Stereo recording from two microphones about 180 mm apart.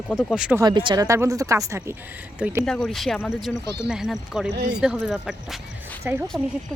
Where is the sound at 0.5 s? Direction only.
25° right (ahead or behind); by 5.6 s centre (ahead or behind).